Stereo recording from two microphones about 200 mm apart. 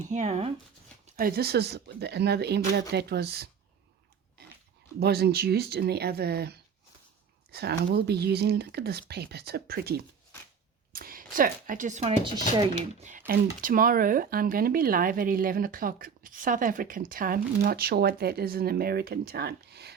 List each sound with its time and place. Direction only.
0.0 s speech: 35° right (ahead or behind)
1.0 s speech: 50° right (ahead or behind)
4.9 s speech: 55° right (ahead or behind); by 12.6 s 20° right (ahead or behind)
13.0 s speech: 40° right (ahead or behind)